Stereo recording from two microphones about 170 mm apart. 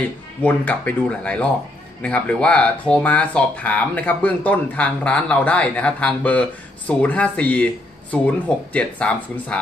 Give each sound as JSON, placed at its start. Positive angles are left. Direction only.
{"t": 0.4, "sound": "speech", "side_deg": 10}